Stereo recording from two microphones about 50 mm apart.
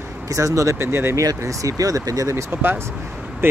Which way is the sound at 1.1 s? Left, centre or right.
Right.